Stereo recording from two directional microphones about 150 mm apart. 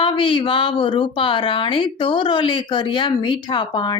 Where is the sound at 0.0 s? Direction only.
35° left (ahead or behind).